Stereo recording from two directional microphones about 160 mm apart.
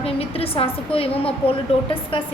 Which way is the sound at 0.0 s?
35° left (ahead or behind).